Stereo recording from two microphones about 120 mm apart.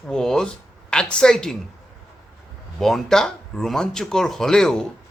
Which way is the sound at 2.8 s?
Centre (ahead or behind).